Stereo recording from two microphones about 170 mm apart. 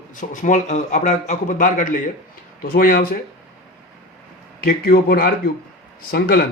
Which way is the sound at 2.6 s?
60° left (ahead or behind).